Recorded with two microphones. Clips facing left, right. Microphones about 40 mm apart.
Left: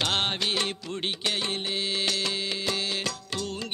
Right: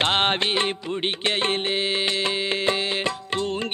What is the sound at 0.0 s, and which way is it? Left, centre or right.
Music, right.